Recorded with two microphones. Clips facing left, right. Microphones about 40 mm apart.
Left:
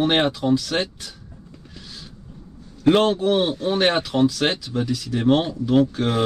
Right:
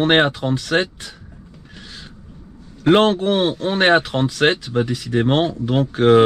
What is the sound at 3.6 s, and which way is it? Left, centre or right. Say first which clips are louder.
Speech: right 4 dB; right.